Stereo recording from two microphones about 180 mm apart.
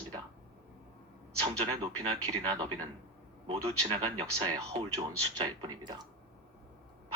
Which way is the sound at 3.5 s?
30° right (ahead or behind).